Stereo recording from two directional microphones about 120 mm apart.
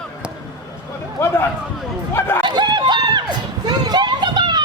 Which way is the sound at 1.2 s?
20° left (ahead or behind).